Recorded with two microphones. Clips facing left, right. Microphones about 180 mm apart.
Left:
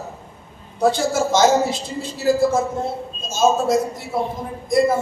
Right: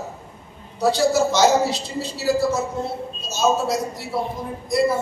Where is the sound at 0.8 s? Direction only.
50° left (ahead or behind).